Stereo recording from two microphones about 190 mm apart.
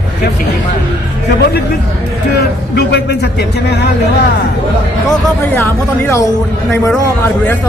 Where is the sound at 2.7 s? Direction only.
60° left (ahead or behind).